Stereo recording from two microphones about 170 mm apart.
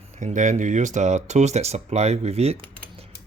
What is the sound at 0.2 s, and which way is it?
Speech, 45° right (ahead or behind).